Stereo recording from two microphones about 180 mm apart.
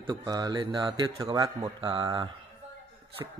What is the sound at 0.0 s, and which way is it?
A man's voice, 25° right (ahead or behind).